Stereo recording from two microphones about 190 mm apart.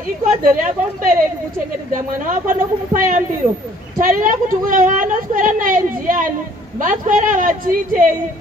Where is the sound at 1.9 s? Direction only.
45° right (ahead or behind).